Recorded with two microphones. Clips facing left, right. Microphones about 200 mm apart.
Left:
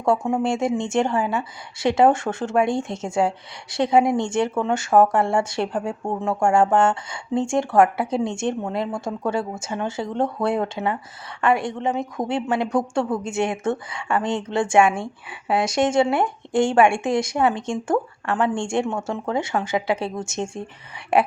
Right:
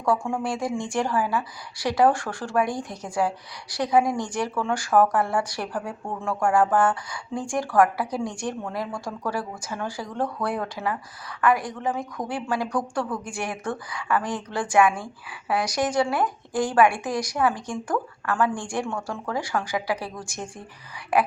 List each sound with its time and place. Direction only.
0.0 s a woman's voice: 20° left (ahead or behind)